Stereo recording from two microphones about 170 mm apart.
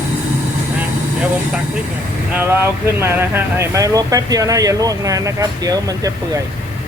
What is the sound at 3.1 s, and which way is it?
Speech, 10° right (ahead or behind).